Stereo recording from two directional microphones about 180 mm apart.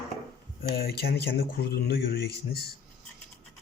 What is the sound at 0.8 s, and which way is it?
Speech, 60° left (ahead or behind).